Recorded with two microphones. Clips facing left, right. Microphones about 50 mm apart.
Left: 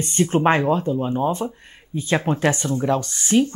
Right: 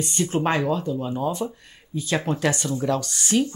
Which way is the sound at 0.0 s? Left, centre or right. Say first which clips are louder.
Left 5 dB; left.